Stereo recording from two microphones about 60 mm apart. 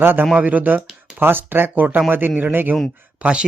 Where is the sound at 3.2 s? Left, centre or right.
Centre.